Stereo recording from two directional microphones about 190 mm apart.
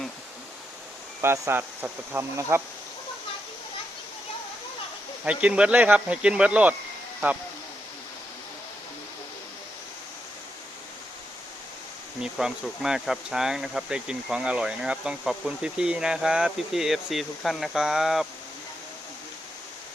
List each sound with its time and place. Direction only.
1.2 s speech: 15° right (ahead or behind)
5.2 s speech: 5° right (ahead or behind)
12.2 s speech: 5° right (ahead or behind)